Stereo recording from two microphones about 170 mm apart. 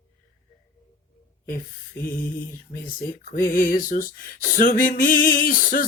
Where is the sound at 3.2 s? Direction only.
55° left (ahead or behind).